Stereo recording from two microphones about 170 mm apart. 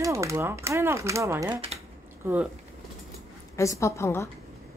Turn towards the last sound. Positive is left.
turn(degrees=15)  # may be behind; listen again after turning